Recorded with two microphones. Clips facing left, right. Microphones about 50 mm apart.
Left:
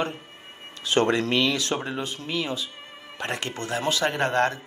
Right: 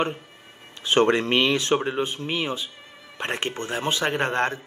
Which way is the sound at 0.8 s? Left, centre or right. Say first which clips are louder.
Right 2 dB; right.